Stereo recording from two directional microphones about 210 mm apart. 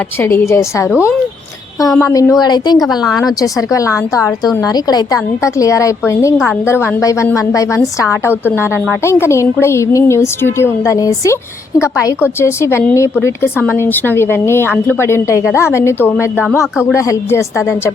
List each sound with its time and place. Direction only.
0.2 s a woman's voice: 10° left (ahead or behind)
2.7 s speech: centre (ahead or behind)
3.2 s a woman's voice: 15° left (ahead or behind)